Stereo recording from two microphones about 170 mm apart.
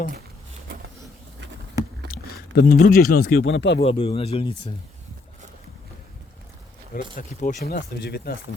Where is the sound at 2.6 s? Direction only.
60° left (ahead or behind); by 3.8 s 90° left.